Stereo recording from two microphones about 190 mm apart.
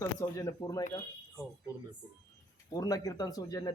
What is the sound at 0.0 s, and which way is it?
Speech, 15° left (ahead or behind).